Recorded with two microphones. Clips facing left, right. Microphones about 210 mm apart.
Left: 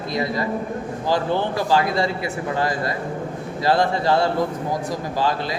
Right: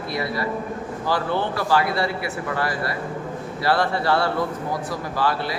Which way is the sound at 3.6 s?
15° left (ahead or behind).